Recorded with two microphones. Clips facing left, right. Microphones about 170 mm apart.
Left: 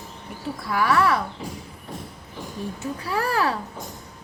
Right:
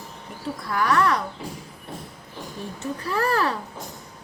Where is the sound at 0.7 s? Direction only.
5° left (ahead or behind).